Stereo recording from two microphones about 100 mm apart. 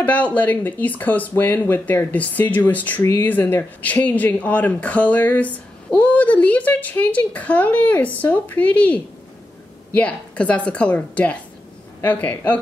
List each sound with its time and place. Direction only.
0.0 s speech: 15° left (ahead or behind)